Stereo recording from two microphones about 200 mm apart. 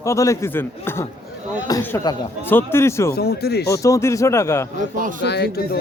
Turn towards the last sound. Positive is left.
turn(degrees=50)  # may be behind; listen again after turning